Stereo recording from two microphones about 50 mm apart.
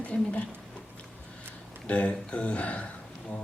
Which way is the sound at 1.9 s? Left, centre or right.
Left.